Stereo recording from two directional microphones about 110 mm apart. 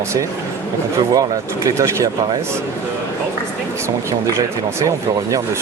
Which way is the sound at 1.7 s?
30° right (ahead or behind).